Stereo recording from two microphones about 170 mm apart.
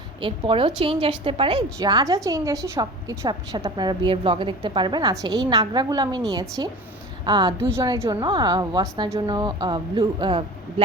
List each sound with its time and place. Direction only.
0.2 s a woman's voice: 30° right (ahead or behind)